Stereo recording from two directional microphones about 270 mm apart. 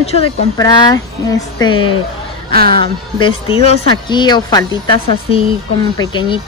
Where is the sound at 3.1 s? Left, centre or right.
Centre.